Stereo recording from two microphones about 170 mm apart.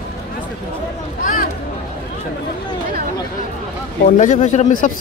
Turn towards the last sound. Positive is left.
turn(degrees=45)  # may be behind; listen again after turning